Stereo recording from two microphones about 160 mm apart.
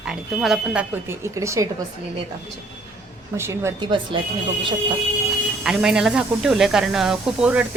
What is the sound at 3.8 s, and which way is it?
Speech, 30° right (ahead or behind).